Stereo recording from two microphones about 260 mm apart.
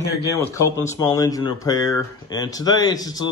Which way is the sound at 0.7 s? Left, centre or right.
Centre.